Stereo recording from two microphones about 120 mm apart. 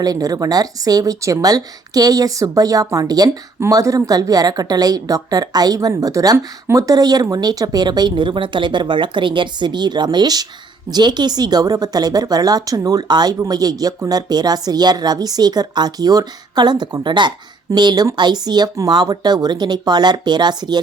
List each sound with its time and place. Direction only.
0.0 s a woman's voice: 30° right (ahead or behind)